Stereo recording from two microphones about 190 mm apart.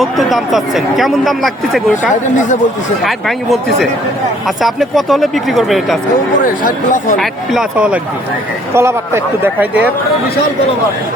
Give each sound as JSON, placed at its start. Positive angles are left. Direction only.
{"t": 0.0, "sound": "speech", "side_deg": 0}
{"t": 3.0, "sound": "speech", "side_deg": 0}
{"t": 6.4, "sound": "speech", "side_deg": 45}
{"t": 7.2, "sound": "speech", "side_deg": -5}
{"t": 8.7, "sound": "a man's voice", "side_deg": -15}